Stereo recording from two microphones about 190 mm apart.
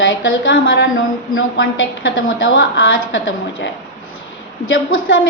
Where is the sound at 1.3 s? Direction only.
85° left.